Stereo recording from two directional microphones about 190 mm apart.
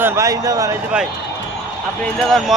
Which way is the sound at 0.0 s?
15° right (ahead or behind).